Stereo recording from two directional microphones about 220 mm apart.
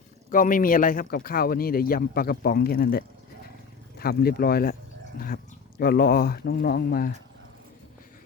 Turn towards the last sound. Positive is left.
turn(degrees=45)  # may be behind; listen again after turning